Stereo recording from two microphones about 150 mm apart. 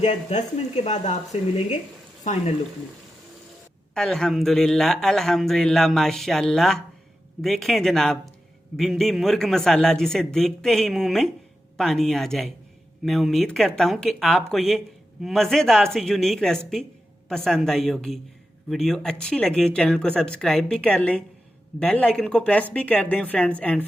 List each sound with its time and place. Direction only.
0.0 s speech: 50° left (ahead or behind)
3.9 s speech: 5° left (ahead or behind)